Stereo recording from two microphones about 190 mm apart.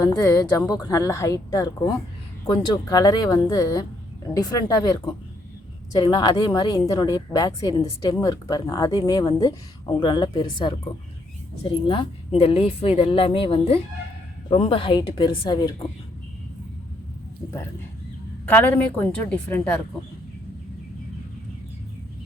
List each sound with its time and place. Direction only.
0.0 s a woman's voice: 15° left (ahead or behind)
11.9 s speech: 30° left (ahead or behind)
18.4 s a woman's voice: 10° left (ahead or behind)